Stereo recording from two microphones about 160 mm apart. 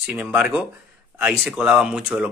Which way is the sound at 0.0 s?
5° right (ahead or behind).